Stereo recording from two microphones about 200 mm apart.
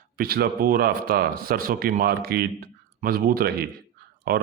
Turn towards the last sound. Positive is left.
turn(degrees=-50)  # may be behind; listen again after turning